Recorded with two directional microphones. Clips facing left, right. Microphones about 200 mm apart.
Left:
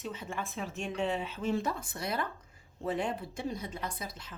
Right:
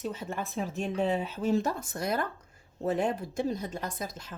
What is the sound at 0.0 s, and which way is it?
Speech, 40° right (ahead or behind).